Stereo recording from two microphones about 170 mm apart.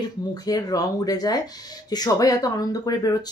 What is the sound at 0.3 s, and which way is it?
Speech, 20° left (ahead or behind).